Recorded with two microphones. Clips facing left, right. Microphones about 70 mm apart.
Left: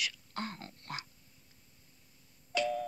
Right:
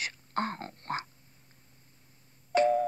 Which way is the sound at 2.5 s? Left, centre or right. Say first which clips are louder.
Right 9 dB; right.